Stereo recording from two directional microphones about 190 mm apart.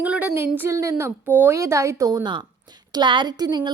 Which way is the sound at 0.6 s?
15° right (ahead or behind).